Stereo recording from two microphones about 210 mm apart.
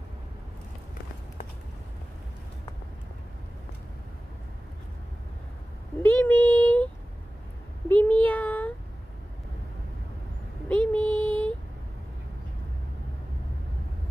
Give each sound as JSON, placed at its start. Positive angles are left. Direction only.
{"t": 6.0, "sound": "child singing", "side_deg": 10}
{"t": 7.9, "sound": "child singing", "side_deg": 10}
{"t": 10.7, "sound": "child singing", "side_deg": 5}
{"t": 11.1, "sound": "a sound", "side_deg": -25}